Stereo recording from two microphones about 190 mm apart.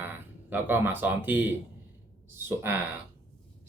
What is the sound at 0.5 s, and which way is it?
Speech, 10° right (ahead or behind).